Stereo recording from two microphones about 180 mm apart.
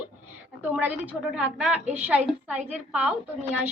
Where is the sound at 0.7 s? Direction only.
10° right (ahead or behind).